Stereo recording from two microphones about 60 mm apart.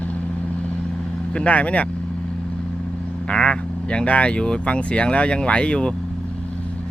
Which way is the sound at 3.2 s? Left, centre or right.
Centre.